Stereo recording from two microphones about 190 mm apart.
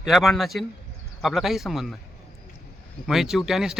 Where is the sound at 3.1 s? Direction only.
Centre (ahead or behind).